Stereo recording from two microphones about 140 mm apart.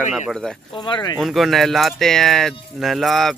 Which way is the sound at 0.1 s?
5° left (ahead or behind).